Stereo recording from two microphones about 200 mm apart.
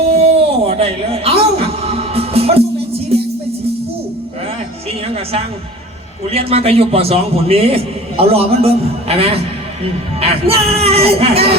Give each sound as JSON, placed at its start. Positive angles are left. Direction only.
{"t": 0.2, "sound": "music", "side_deg": -30}
{"t": 5.0, "sound": "music", "side_deg": -30}
{"t": 6.3, "sound": "a man's voice", "side_deg": -30}